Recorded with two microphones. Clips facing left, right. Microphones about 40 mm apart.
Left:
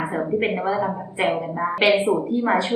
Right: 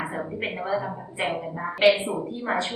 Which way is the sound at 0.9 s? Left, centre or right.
Left.